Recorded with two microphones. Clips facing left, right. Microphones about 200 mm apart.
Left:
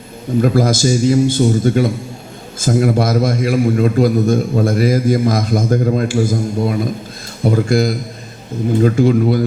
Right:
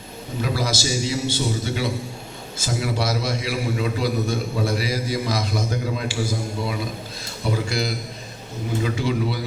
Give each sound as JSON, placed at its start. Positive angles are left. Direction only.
{"t": 0.4, "sound": "a man's voice", "side_deg": 50}